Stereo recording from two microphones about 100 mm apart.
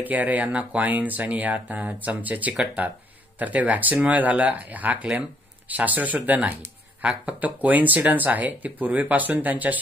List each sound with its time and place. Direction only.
0.0 s speech: 15° right (ahead or behind)